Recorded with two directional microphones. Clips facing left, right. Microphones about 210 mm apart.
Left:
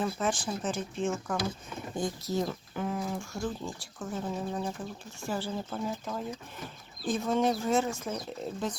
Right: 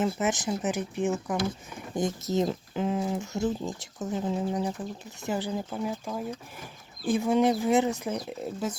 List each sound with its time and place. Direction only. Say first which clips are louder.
0.0 s speech: right 4 dB; 20° right (ahead or behind)